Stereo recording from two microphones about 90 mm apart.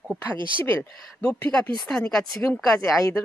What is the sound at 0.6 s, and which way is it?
Speech, 20° left (ahead or behind).